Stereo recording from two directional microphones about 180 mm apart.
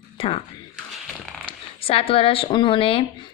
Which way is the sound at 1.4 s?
30° left (ahead or behind).